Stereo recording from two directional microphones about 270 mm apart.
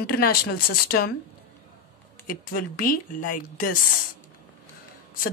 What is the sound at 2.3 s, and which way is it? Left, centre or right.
Speech, left.